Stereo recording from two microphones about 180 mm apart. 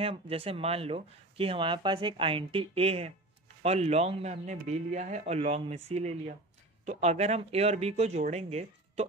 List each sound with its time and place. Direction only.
0.0 s speech: 30° right (ahead or behind)